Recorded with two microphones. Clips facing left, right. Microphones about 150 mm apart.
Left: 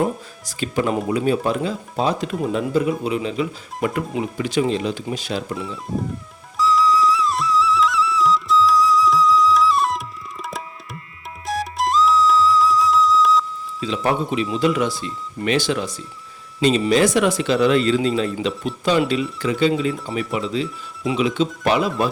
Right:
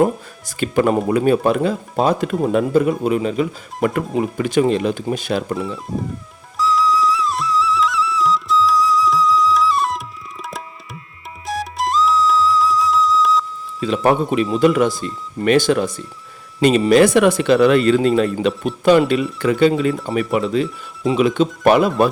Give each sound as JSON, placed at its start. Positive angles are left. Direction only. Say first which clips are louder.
{"t": 0.0, "sound": "speech", "louder": "right 5 dB", "side_deg": -55}
{"t": 5.5, "sound": "speech", "louder": "right 5 dB", "side_deg": 0}
{"t": 6.6, "sound": "music", "louder": "even", "side_deg": 0}
{"t": 11.4, "sound": "music", "louder": "even", "side_deg": 0}
{"t": 13.8, "sound": "speech", "louder": "right 5 dB", "side_deg": -50}